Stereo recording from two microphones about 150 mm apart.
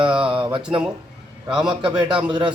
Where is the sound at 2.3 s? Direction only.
30° right (ahead or behind).